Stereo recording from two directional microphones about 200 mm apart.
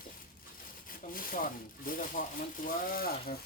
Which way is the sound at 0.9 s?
45° left (ahead or behind).